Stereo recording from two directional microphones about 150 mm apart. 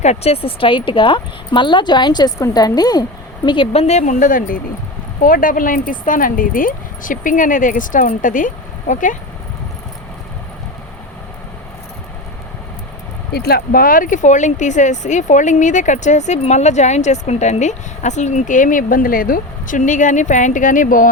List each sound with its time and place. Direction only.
0.0 s speech: 45° left (ahead or behind)
13.3 s speech: 90° left; by 21.1 s 65° left (ahead or behind)